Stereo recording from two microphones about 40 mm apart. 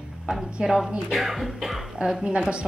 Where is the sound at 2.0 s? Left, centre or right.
Right.